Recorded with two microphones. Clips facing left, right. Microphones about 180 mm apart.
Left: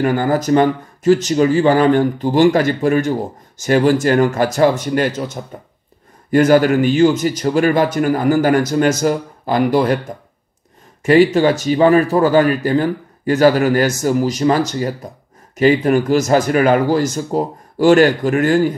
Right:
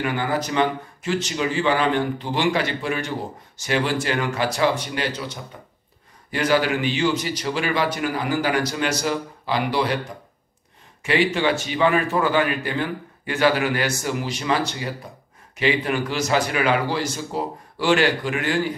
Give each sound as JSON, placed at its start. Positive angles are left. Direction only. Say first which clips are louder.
{"t": 0.0, "sound": "speech", "louder": "left 8 dB", "side_deg": 45}
{"t": 11.0, "sound": "a man's voice", "louder": "left 10 dB", "side_deg": 45}